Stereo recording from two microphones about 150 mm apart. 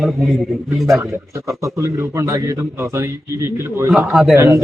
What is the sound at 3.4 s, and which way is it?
Speech, 15° right (ahead or behind).